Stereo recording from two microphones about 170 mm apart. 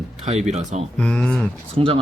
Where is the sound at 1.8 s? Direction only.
35° right (ahead or behind).